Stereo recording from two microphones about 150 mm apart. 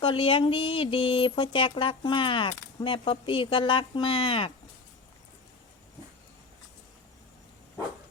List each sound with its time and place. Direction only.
0.0 s speech: 35° left (ahead or behind)